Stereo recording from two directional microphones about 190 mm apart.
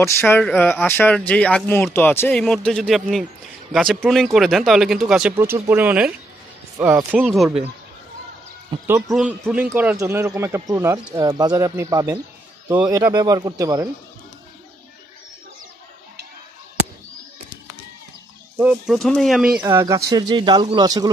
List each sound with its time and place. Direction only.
0.0 s speech: 10° left (ahead or behind); by 7.2 s 10° right (ahead or behind)
7.2 s speech: centre (ahead or behind)
8.8 s speech: 15° right (ahead or behind)
18.6 s speech: 5° right (ahead or behind)
19.6 s speech: 15° right (ahead or behind)